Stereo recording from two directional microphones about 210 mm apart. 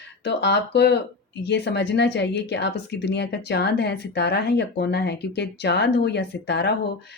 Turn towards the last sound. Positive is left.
turn(degrees=55)  # may be behind; listen again after turning